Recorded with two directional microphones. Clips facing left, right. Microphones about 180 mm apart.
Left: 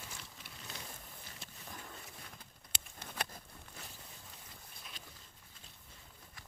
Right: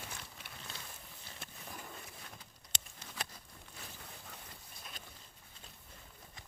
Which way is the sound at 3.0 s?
60° left (ahead or behind).